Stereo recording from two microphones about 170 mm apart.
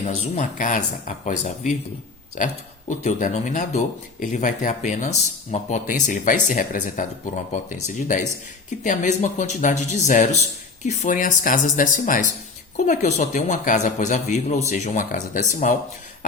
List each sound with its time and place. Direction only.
0.0 s speech: 40° left (ahead or behind)